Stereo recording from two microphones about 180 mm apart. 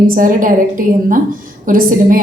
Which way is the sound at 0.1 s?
50° right (ahead or behind).